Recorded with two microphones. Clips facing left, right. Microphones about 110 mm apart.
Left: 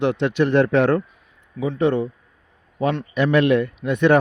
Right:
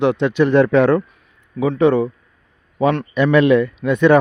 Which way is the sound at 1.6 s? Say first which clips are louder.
Right 5 dB; 90° right.